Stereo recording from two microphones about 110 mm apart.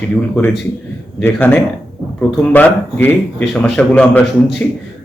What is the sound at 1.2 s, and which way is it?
A man's voice, 15° left (ahead or behind).